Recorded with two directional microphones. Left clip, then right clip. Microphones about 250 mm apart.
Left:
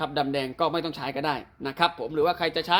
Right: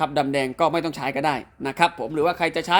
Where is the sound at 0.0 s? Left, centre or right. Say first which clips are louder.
Right 5 dB; right.